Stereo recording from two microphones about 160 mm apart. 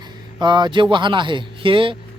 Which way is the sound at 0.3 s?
30° right (ahead or behind).